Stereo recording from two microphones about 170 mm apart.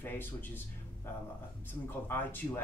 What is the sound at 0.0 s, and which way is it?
Speech, 10° left (ahead or behind).